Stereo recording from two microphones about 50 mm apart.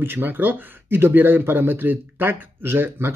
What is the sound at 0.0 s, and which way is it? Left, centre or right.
Speech, right.